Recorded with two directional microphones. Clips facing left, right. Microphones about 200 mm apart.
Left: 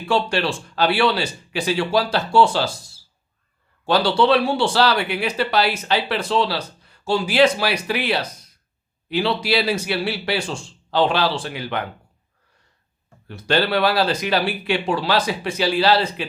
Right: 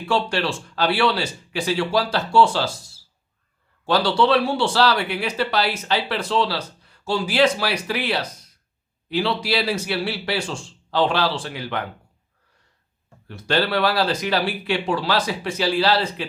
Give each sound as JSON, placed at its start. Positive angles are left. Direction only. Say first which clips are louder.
{"t": 0.1, "sound": "speech", "louder": "left 2 dB", "side_deg": 20}
{"t": 3.8, "sound": "a man's voice", "louder": "left 2 dB", "side_deg": 15}
{"t": 13.2, "sound": "speech", "louder": "left 2 dB", "side_deg": 20}